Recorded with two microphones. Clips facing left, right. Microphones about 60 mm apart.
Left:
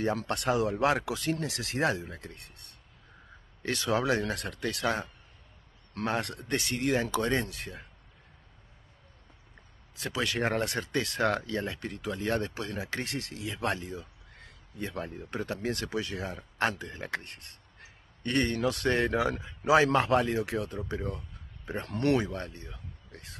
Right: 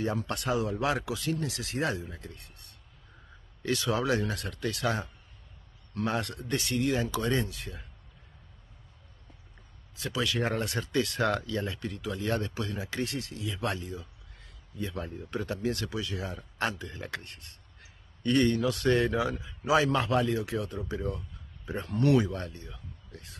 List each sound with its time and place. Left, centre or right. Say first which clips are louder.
0.1 s speech: left 2 dB; left
3.6 s speech: even; left
9.9 s speech: even; left